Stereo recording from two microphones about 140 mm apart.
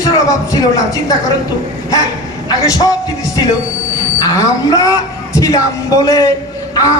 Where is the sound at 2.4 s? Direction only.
25° left (ahead or behind).